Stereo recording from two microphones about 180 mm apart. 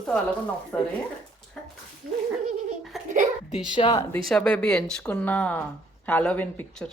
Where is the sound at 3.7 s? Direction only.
30° left (ahead or behind).